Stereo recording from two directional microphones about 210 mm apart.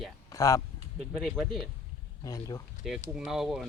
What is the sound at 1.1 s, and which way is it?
Speech, 5° right (ahead or behind).